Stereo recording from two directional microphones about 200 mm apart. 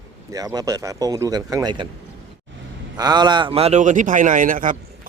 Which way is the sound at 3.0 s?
20° right (ahead or behind).